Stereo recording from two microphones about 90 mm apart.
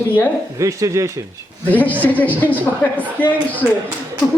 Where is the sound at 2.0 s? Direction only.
20° left (ahead or behind).